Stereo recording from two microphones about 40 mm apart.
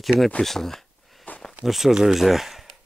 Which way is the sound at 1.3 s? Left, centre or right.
Left.